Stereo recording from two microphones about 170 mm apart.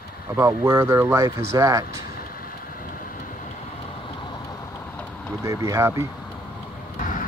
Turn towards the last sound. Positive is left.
turn(degrees=55)  # may be behind; listen again after turning